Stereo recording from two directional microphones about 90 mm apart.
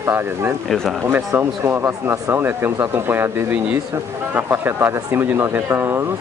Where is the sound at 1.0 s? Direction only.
30° right (ahead or behind).